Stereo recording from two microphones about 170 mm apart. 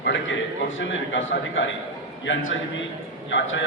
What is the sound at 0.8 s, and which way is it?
Speech, 90° left.